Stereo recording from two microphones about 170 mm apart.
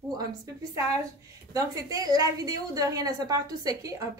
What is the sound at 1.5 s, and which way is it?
A woman's voice, 20° right (ahead or behind).